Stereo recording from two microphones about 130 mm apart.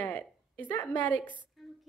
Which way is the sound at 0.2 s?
10° left (ahead or behind).